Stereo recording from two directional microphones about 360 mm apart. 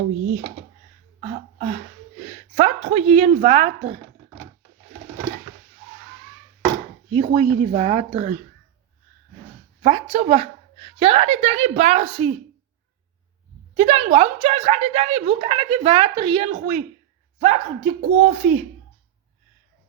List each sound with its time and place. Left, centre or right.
1.2 s a sound: centre
7.1 s speech: centre
9.8 s speech: centre
13.7 s speech: centre